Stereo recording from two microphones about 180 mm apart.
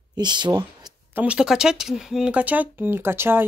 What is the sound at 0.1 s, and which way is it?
Speech, 25° right (ahead or behind).